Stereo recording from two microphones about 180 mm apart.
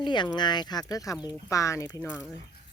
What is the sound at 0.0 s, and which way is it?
Speech, 25° left (ahead or behind).